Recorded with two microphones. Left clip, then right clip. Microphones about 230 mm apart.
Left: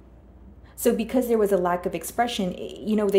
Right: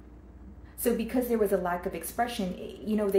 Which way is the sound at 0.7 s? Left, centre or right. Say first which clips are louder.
Left 6 dB; left.